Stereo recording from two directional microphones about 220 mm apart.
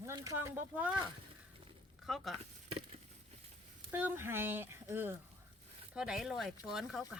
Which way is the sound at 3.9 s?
10° right (ahead or behind).